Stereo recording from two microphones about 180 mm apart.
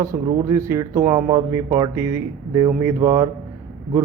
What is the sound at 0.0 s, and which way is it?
Speech, 20° right (ahead or behind).